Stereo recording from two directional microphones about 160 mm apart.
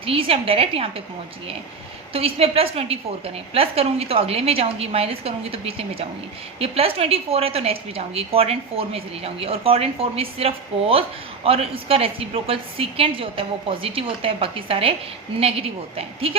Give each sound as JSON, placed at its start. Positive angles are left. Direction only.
{"t": 0.0, "sound": "a woman's voice", "side_deg": -35}
{"t": 2.1, "sound": "a woman's voice", "side_deg": -35}